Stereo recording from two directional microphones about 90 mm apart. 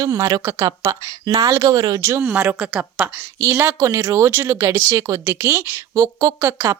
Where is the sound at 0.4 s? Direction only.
30° right (ahead or behind).